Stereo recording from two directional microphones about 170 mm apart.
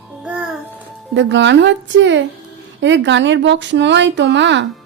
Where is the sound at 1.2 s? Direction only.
90° right.